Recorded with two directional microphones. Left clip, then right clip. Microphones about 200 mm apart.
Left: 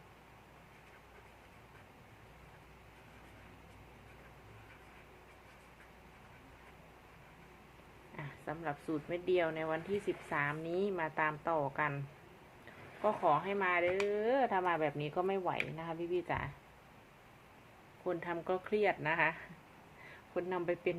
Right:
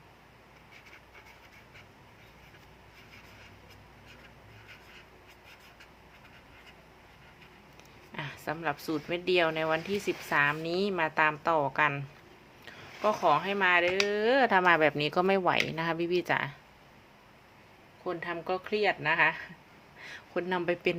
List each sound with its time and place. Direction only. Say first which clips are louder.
8.1 s speech: right 8 dB; 25° right (ahead or behind)
18.0 s speech: right 4 dB; 5° right (ahead or behind)
20.3 s speech: right 6 dB; 30° right (ahead or behind)